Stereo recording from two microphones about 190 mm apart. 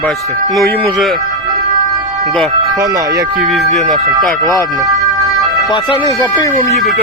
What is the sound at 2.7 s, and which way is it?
Speech, 20° right (ahead or behind).